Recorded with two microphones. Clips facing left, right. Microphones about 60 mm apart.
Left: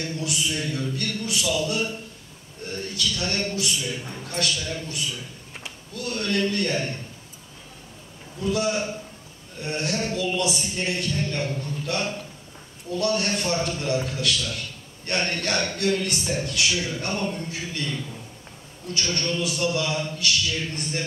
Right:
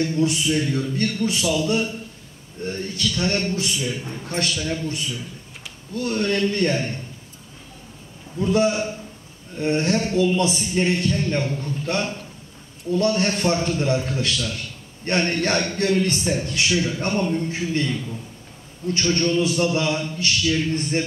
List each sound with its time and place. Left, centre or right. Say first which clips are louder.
0.0 s a man's voice: right 7 dB; right
8.4 s a man's voice: right 5 dB; right
18.9 s a man's voice: right 6 dB; right